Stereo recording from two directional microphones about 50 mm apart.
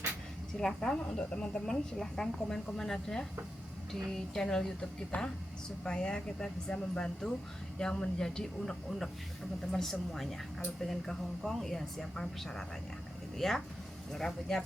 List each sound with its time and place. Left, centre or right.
0.6 s speech: centre